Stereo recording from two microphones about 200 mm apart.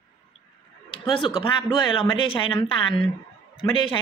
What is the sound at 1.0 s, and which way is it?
Speech, 25° left (ahead or behind).